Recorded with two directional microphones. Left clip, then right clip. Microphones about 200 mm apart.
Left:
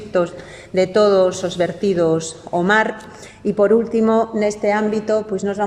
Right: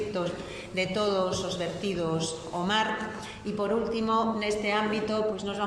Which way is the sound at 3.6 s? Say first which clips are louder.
Left 14 dB; 45° left (ahead or behind).